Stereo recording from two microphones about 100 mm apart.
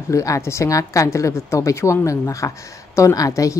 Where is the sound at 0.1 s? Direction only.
30° left (ahead or behind).